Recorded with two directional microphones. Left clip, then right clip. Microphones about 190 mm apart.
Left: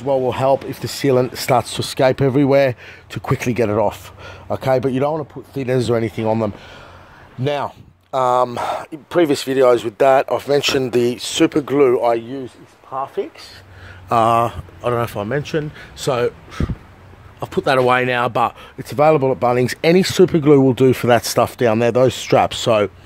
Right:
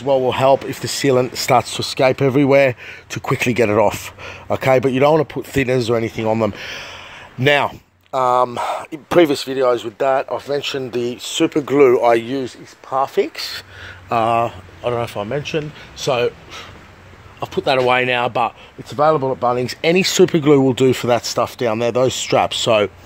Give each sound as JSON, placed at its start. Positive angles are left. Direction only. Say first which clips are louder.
{"t": 0.0, "sound": "speech", "louder": "right 2 dB", "side_deg": 5}
{"t": 5.1, "sound": "speech", "louder": "right 8 dB", "side_deg": -30}
{"t": 5.7, "sound": "speech", "louder": "left 3 dB", "side_deg": 10}
{"t": 6.5, "sound": "speech", "louder": "right 9 dB", "side_deg": -10}
{"t": 8.1, "sound": "speech", "louder": "even", "side_deg": 5}
{"t": 9.3, "sound": "speech", "louder": "left 3 dB", "side_deg": 25}
{"t": 11.3, "sound": "speech", "louder": "left 1 dB", "side_deg": 15}
{"t": 11.6, "sound": "speech", "louder": "right 6 dB", "side_deg": 0}
{"t": 12.2, "sound": "speech", "louder": "right 5 dB", "side_deg": -30}
{"t": 14.0, "sound": "speech", "louder": "left 2 dB", "side_deg": 15}
{"t": 18.9, "sound": "speech", "louder": "left 2 dB", "side_deg": 30}